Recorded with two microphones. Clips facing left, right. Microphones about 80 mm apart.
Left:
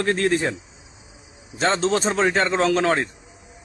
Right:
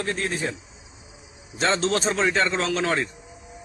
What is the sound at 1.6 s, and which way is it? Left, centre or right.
A man's voice, left.